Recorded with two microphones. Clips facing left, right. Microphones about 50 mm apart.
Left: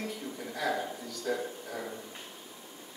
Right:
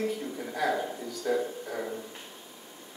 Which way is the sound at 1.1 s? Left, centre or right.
Centre.